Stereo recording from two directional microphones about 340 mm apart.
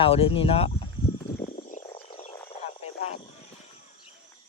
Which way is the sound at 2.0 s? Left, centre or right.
Centre.